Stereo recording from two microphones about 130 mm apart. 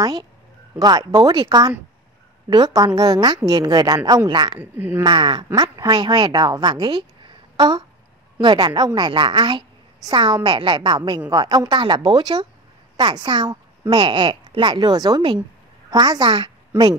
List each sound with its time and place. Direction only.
0.7 s a woman's voice: 30° right (ahead or behind)
2.5 s a woman's voice: 30° right (ahead or behind)
4.6 s a woman's voice: 15° right (ahead or behind)
5.0 s a woman's voice: 40° right (ahead or behind)